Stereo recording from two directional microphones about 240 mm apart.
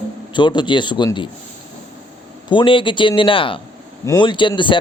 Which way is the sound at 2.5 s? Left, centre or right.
Left.